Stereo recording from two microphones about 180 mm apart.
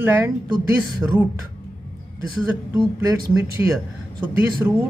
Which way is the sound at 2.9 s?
20° right (ahead or behind).